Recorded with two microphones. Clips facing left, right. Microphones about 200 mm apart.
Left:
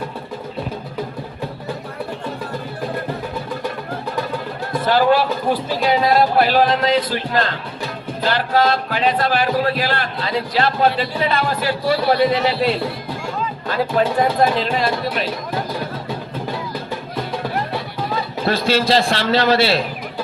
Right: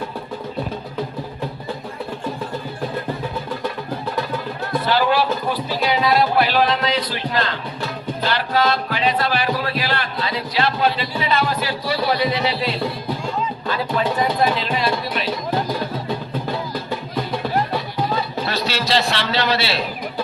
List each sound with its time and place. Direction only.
4.9 s a sound: 50° left (ahead or behind)
5.8 s speech: 45° left (ahead or behind)
14.2 s speech: 50° left (ahead or behind)
18.4 s speech: 50° left (ahead or behind)